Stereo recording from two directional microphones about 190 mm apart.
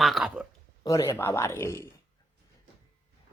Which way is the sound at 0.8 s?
15° left (ahead or behind).